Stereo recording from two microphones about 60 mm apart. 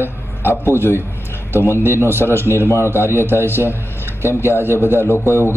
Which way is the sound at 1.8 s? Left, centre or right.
Right.